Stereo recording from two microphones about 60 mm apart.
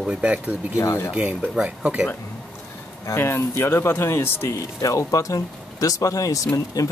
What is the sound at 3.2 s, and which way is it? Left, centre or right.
Speech, left.